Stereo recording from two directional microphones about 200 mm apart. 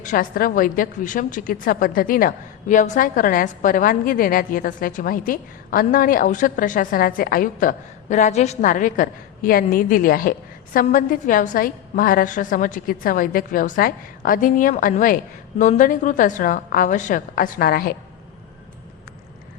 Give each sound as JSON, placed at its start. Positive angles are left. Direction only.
{"t": 0.0, "sound": "a woman's voice", "side_deg": 40}